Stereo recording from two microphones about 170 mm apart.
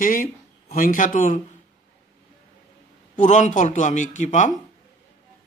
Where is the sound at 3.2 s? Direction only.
45° left (ahead or behind).